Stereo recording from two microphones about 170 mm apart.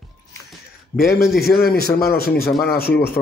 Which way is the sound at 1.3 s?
65° left (ahead or behind).